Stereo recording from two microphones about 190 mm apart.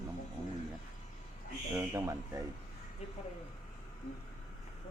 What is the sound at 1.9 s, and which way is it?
Speech, 15° right (ahead or behind).